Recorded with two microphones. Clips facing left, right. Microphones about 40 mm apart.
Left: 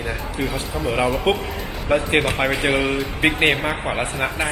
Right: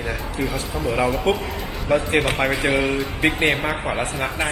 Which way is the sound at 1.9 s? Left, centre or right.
Left.